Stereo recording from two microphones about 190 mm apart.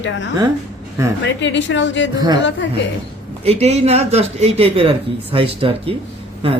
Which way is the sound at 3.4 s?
35° right (ahead or behind).